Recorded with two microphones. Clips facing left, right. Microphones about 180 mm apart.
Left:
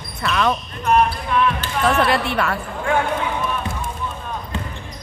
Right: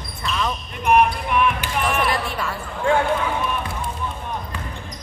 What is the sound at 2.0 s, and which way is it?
Speech, 70° left (ahead or behind).